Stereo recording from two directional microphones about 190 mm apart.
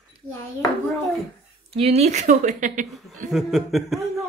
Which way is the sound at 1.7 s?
35° right (ahead or behind).